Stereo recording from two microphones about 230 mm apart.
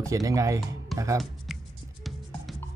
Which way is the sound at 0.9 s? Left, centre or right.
Centre.